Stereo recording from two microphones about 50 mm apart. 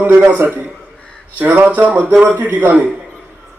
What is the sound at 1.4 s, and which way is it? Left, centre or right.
Speech, right.